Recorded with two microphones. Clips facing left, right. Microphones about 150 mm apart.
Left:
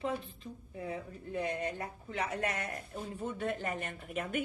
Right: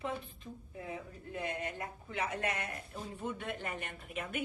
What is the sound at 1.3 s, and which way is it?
A woman's voice, 35° left (ahead or behind).